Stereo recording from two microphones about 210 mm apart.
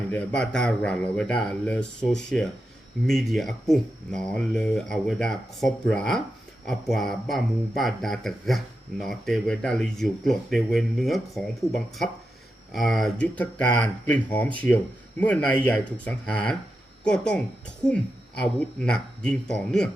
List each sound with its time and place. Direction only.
0.1 s speech: 5° left (ahead or behind)